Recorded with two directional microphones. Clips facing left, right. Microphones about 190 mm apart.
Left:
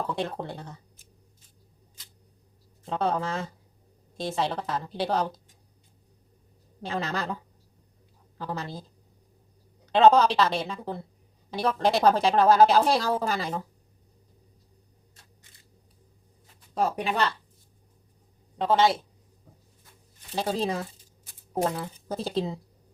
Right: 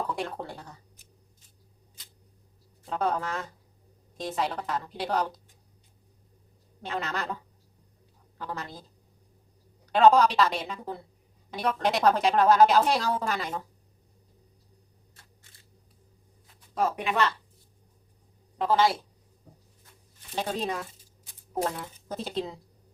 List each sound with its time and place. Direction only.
0.2 s a woman's voice: 20° left (ahead or behind)
2.9 s a woman's voice: 25° left (ahead or behind)
6.8 s speech: 30° left (ahead or behind)
8.4 s speech: 30° left (ahead or behind)
9.9 s a woman's voice: 25° left (ahead or behind)
16.7 s speech: 35° left (ahead or behind)
18.6 s a woman's voice: 25° left (ahead or behind)
20.3 s a woman's voice: 30° left (ahead or behind)